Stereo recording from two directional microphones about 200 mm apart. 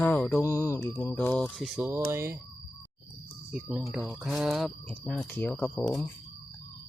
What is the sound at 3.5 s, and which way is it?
Speech, 5° right (ahead or behind).